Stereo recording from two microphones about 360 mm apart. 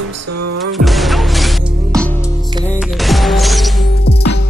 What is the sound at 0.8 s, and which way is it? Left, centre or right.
Music, centre.